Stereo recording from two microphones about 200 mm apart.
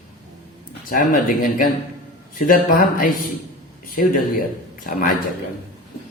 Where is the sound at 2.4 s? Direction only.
45° left (ahead or behind).